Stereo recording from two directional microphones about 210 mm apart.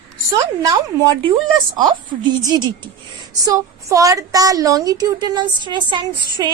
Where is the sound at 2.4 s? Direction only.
20° right (ahead or behind).